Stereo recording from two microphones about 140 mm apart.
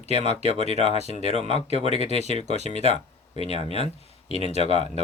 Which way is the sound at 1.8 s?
50° left (ahead or behind).